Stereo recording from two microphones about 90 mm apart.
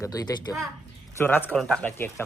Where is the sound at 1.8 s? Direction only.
25° left (ahead or behind).